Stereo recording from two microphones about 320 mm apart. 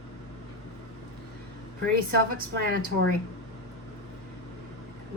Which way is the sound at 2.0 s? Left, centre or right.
Right.